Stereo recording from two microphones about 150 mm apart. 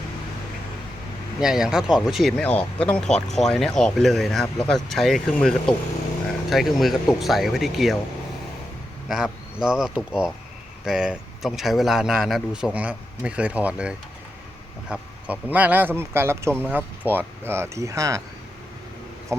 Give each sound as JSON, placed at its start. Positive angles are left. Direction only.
{"t": 1.4, "sound": "speech", "side_deg": -5}
{"t": 9.0, "sound": "speech", "side_deg": -5}
{"t": 19.3, "sound": "speech", "side_deg": -20}